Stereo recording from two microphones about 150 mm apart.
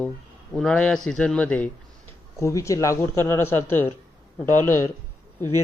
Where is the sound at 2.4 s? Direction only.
20° left (ahead or behind).